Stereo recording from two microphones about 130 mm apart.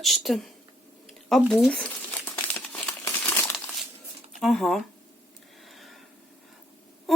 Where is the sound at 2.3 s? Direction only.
15° left (ahead or behind).